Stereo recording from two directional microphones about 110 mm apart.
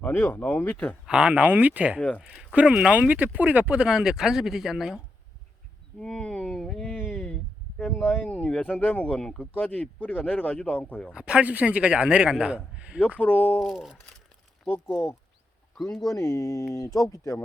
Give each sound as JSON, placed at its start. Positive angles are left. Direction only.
{"t": 0.0, "sound": "speech", "side_deg": 20}
{"t": 1.0, "sound": "a man's voice", "side_deg": -10}
{"t": 2.0, "sound": "speech", "side_deg": 10}
{"t": 2.2, "sound": "a man's voice", "side_deg": -10}
{"t": 6.0, "sound": "a sound", "side_deg": 10}
{"t": 7.8, "sound": "speech", "side_deg": 10}
{"t": 11.1, "sound": "a man's voice", "side_deg": -10}
{"t": 13.1, "sound": "speech", "side_deg": 15}
{"t": 13.6, "sound": "speech", "side_deg": 0}
{"t": 15.9, "sound": "speech", "side_deg": 35}